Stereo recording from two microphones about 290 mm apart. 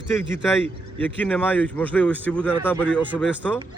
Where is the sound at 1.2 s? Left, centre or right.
Centre.